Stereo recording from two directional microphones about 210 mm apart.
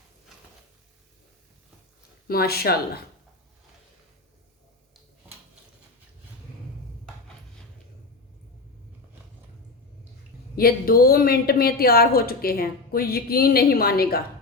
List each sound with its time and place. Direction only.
2.2 s a woman's voice: 45° left (ahead or behind)
10.5 s a woman's voice: 45° left (ahead or behind)